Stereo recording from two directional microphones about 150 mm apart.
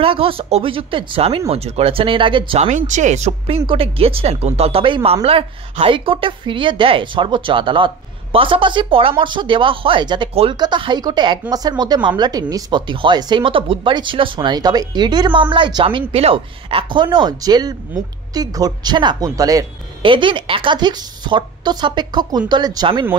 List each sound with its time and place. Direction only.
0.0 s speech: 35° right (ahead or behind)
2.7 s a woman's voice: 55° right (ahead or behind); by 19.6 s 25° right (ahead or behind)
20.0 s a woman's voice: 35° right (ahead or behind)